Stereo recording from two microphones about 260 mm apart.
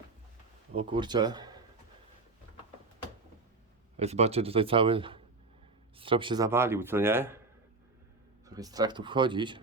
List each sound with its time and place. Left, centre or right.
0.8 s speech: centre
3.9 s a man's voice: right; by 7.3 s centre
8.4 s speech: centre